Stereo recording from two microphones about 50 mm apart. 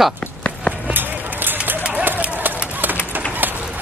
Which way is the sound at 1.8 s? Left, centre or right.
Right.